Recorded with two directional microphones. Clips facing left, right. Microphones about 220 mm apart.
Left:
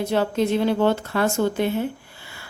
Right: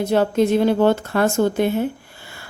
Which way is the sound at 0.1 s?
45° right (ahead or behind).